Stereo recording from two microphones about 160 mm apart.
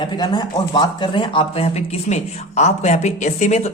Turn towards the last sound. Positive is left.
turn(degrees=45)  # may be behind; listen again after turning